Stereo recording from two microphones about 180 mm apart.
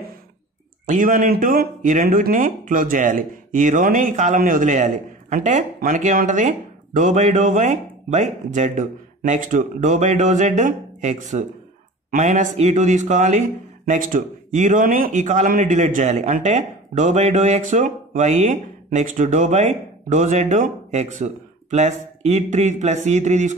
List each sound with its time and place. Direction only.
0.8 s a man's voice: 50° right (ahead or behind)